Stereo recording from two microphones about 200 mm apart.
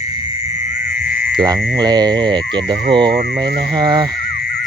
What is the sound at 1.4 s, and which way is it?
Speech, 20° right (ahead or behind).